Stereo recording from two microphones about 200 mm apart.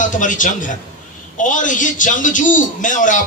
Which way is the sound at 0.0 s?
40° left (ahead or behind).